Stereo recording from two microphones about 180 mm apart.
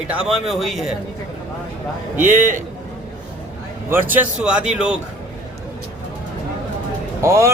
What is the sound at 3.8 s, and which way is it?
Speech, 10° right (ahead or behind).